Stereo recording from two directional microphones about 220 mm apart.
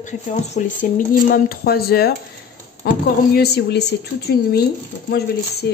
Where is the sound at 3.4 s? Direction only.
45° left (ahead or behind).